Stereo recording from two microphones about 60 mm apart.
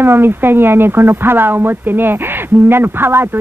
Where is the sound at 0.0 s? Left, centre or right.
Right.